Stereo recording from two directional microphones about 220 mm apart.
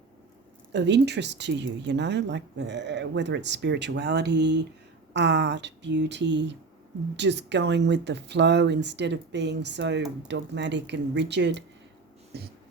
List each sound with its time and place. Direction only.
0.7 s speech: 50° right (ahead or behind)